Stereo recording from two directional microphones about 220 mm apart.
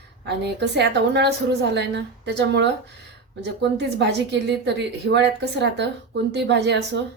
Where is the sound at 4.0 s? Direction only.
50° right (ahead or behind).